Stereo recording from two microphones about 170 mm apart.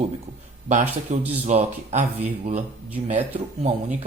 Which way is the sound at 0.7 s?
45° right (ahead or behind).